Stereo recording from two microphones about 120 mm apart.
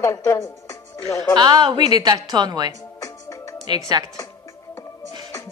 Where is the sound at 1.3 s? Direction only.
35° right (ahead or behind).